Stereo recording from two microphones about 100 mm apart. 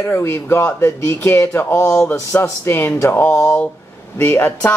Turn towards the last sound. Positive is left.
turn(degrees=20)  # may be behind; listen again after turning